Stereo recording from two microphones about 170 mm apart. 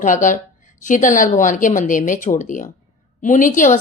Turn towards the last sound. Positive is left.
turn(degrees=50)  # may be behind; listen again after turning